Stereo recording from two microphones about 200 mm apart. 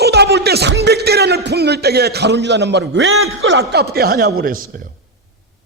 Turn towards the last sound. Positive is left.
turn(degrees=-45)  # may be behind; listen again after turning